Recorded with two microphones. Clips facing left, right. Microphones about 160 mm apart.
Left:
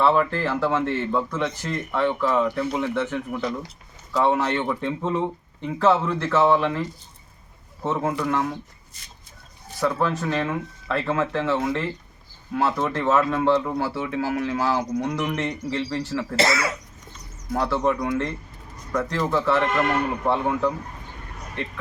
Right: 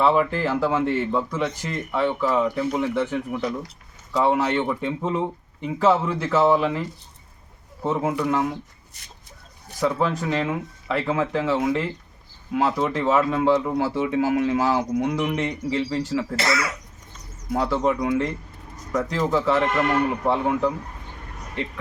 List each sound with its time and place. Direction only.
0.0 s speech: 10° right (ahead or behind)
9.8 s speech: 15° right (ahead or behind)
16.3 s speech: 25° left (ahead or behind)
17.5 s speech: 15° right (ahead or behind)